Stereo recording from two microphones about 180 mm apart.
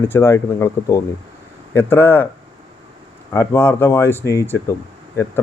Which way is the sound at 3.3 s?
10° left (ahead or behind).